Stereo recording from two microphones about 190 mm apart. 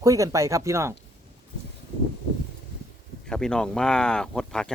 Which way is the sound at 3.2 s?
5° left (ahead or behind).